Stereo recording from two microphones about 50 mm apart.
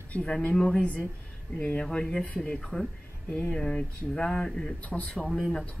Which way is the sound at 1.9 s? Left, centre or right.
Centre.